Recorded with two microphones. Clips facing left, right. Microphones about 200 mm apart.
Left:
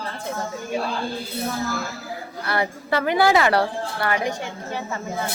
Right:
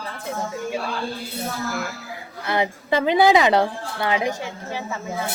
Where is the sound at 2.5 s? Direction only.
20° right (ahead or behind).